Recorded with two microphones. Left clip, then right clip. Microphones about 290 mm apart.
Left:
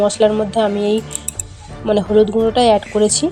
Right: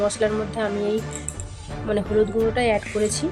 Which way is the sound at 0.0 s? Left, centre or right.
Centre.